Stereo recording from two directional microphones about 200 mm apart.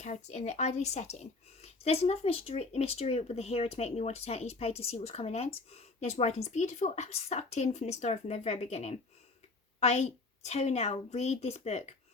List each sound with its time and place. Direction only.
0.0 s speech: 35° left (ahead or behind)